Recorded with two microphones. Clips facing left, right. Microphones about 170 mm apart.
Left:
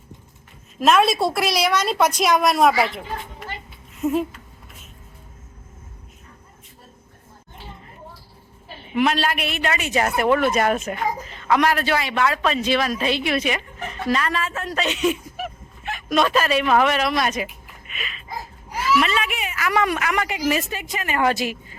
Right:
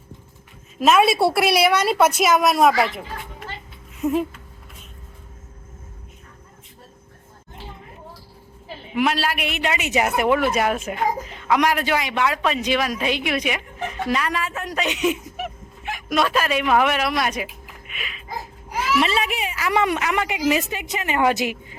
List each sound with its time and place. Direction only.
0.8 s a woman's voice: 5° right (ahead or behind)
9.0 s speech: 5° right (ahead or behind)
17.9 s a sound: 10° right (ahead or behind)
18.9 s a woman's voice: 30° right (ahead or behind)